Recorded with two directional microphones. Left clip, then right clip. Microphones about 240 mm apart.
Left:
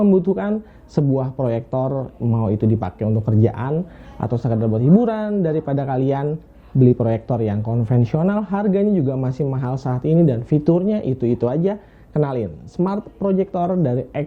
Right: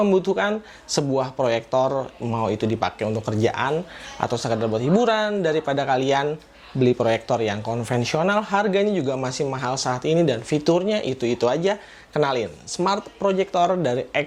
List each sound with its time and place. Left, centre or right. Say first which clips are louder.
0.0 s speech: left 1 dB; centre
1.8 s speech: right 2 dB; right
2.3 s speech: left 1 dB; centre